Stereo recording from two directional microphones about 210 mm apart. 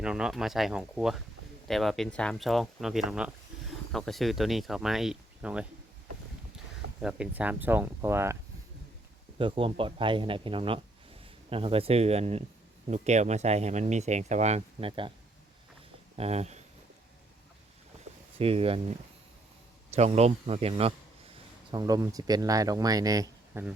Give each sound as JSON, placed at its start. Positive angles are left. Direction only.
{"t": 0.0, "sound": "speech", "side_deg": -5}
{"t": 7.0, "sound": "speech", "side_deg": -5}
{"t": 9.4, "sound": "speech", "side_deg": -25}
{"t": 16.1, "sound": "speech", "side_deg": -30}
{"t": 18.3, "sound": "speech", "side_deg": -25}
{"t": 21.7, "sound": "speech", "side_deg": -20}